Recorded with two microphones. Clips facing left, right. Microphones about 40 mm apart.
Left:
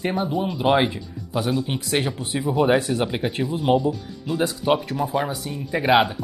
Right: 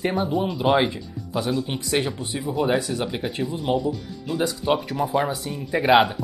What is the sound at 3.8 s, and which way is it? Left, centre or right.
Speech, left.